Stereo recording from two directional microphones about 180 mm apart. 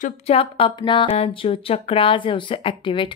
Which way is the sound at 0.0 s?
35° left (ahead or behind).